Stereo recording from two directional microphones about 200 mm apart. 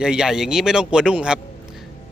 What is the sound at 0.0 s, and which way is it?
Speech, 5° right (ahead or behind).